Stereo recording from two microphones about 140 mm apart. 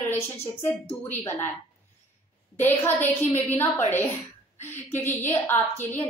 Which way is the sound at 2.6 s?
15° left (ahead or behind).